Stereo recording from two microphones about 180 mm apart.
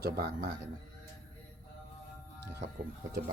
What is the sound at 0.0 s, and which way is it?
Speech, 60° right (ahead or behind).